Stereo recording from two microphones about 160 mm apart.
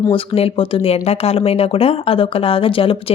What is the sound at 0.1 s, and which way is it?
Speech, 35° left (ahead or behind).